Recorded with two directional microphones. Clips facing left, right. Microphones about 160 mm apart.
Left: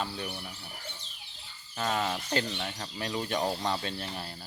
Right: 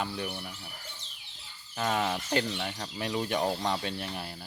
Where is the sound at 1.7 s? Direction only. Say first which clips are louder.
Right 1 dB; 10° right (ahead or behind).